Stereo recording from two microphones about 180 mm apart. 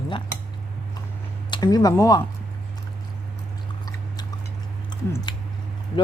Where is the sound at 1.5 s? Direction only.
20° left (ahead or behind).